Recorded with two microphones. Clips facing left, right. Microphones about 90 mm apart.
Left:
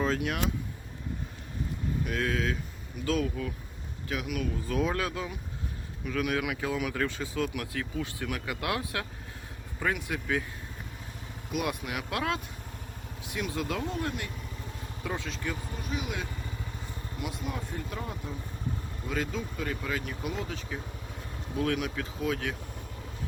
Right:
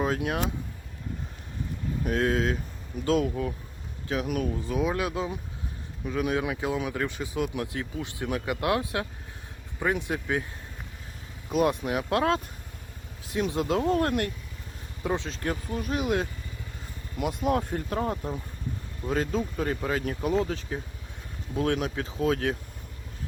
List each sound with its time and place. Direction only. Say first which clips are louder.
0.0 s speech: right 2 dB; 15° right (ahead or behind)
2.0 s speech: right 6 dB; 30° right (ahead or behind)
4.7 s speech: right 1 dB; 10° right (ahead or behind)
11.5 s speech: right 7 dB; 35° right (ahead or behind)
13.5 s speech: right 7 dB; 25° right (ahead or behind)
13.9 s speech: right 9 dB; 50° right (ahead or behind)
15.0 s speech: right 6 dB; 25° right (ahead or behind)
15.4 s speech: right 5 dB; 45° right (ahead or behind)
17.4 s speech: right 10 dB; 50° right (ahead or behind)